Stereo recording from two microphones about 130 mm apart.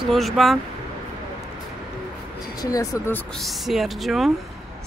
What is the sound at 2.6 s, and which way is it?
Speech, 25° left (ahead or behind).